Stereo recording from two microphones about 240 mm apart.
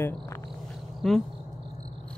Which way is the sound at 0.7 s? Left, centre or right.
Centre.